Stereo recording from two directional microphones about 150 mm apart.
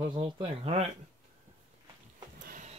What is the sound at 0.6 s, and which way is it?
Speech, 45° right (ahead or behind).